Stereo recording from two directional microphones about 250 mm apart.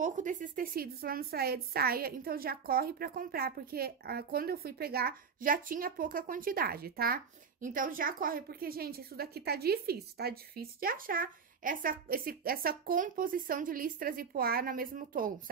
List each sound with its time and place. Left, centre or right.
0.0 s a woman's voice: right